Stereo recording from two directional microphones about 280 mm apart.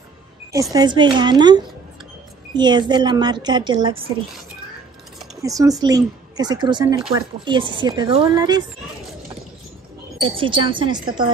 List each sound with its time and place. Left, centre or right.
0.5 s a woman's voice: centre
5.4 s a woman's voice: centre
10.2 s a woman's voice: centre